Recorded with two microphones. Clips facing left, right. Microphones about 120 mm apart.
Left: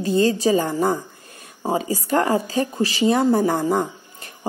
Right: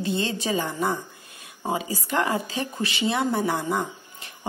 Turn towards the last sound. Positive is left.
turn(degrees=45)  # may be behind; listen again after turning